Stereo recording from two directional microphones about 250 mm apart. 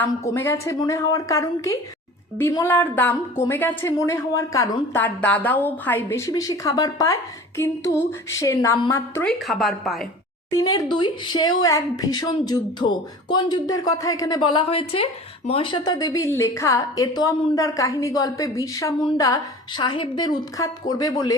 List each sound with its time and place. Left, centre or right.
0.3 s a woman's voice: centre
9.4 s speech: centre
10.5 s a woman's voice: centre